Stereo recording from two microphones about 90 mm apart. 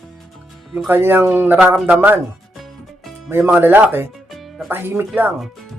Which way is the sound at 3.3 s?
25° right (ahead or behind).